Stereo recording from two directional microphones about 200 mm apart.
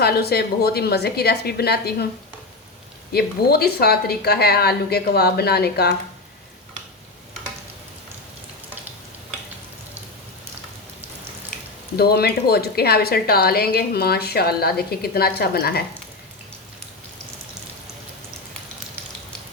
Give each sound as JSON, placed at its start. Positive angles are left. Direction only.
{"t": 0.0, "sound": "a woman's voice", "side_deg": 50}
{"t": 3.1, "sound": "a woman's voice", "side_deg": 50}
{"t": 11.9, "sound": "a woman's voice", "side_deg": 50}